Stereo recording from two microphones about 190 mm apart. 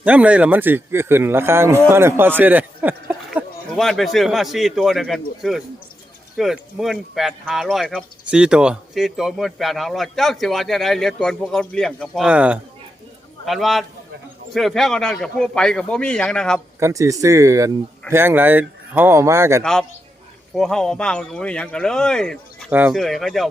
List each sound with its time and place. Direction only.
0.0 s a man's voice: 5° right (ahead or behind)
16.8 s speech: 15° right (ahead or behind)
20.6 s speech: centre (ahead or behind)